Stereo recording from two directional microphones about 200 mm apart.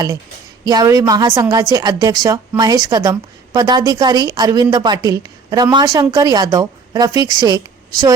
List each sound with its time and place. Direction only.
0.6 s a woman's voice: 20° right (ahead or behind)